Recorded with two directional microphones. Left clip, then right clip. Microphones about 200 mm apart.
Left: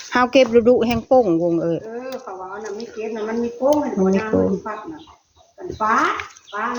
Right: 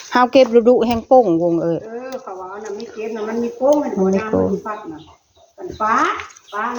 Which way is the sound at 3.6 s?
20° right (ahead or behind).